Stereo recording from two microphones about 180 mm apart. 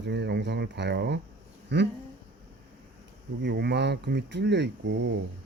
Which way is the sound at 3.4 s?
65° right (ahead or behind).